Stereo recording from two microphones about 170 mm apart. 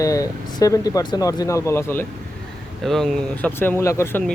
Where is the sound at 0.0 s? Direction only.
20° left (ahead or behind).